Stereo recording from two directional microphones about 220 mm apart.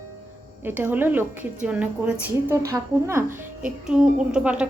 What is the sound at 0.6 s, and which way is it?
A woman's voice, 10° right (ahead or behind).